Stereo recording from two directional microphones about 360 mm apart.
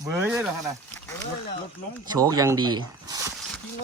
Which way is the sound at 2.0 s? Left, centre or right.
Centre.